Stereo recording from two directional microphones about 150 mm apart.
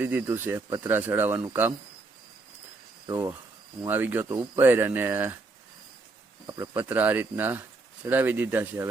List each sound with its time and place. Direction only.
0.0 s speech: 10° right (ahead or behind)
3.8 s speech: 10° right (ahead or behind)
6.7 s speech: 10° right (ahead or behind)